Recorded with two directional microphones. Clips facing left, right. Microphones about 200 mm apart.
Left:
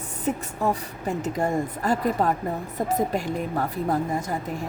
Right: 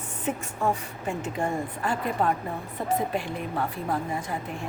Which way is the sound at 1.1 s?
40° left (ahead or behind).